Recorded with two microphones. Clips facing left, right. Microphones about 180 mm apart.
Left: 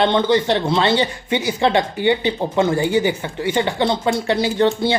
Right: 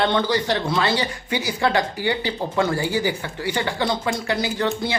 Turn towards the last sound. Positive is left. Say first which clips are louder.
# left 6 dB
turn(degrees=30)  # may be behind; listen again after turning